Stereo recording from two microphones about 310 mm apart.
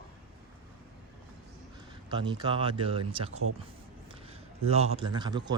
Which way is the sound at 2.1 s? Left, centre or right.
Centre.